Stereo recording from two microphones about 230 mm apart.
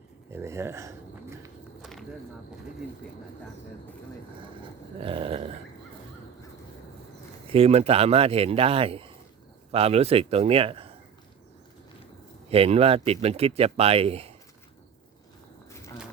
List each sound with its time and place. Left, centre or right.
0.3 s speech: centre
1.8 s a sound: centre
5.0 s speech: right
7.5 s speech: right
12.5 s speech: right